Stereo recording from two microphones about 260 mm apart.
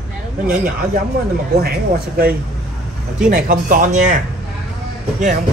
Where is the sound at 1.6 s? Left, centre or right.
Right.